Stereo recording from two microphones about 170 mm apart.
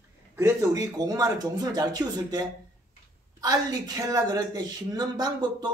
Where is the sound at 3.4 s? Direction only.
20° right (ahead or behind).